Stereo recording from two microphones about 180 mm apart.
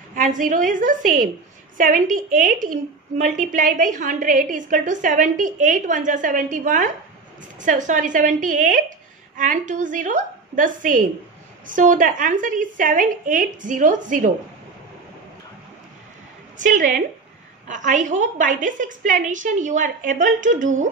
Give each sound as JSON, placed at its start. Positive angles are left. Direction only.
{"t": 0.1, "sound": "a woman's voice", "side_deg": -45}
{"t": 16.5, "sound": "a woman's voice", "side_deg": -45}